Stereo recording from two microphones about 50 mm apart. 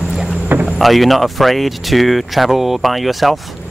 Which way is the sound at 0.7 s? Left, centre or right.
Centre.